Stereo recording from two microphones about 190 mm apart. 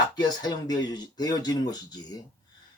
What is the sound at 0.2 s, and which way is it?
Speech, 20° left (ahead or behind).